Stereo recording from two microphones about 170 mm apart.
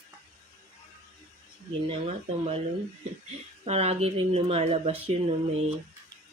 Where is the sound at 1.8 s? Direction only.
35° right (ahead or behind).